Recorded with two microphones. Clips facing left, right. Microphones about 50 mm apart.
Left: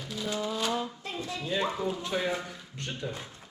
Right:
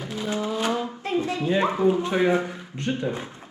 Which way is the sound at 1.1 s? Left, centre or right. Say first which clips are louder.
Right 10 dB; right.